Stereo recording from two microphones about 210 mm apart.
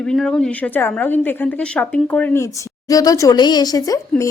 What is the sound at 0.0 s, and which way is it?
A woman's voice, centre (ahead or behind).